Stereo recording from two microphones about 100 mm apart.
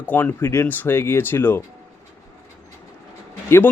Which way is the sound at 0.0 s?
15° left (ahead or behind).